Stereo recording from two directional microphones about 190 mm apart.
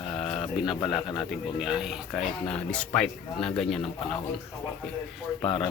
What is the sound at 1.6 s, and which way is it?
Speech, 5° right (ahead or behind).